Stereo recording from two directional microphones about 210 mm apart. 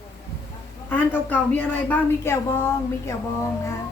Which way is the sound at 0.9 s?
10° left (ahead or behind).